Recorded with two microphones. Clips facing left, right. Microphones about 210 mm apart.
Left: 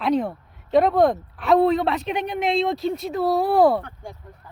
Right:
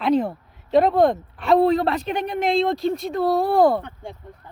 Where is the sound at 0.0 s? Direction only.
Centre (ahead or behind).